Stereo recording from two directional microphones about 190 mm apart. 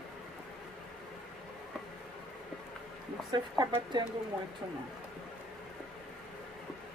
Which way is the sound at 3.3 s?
20° right (ahead or behind).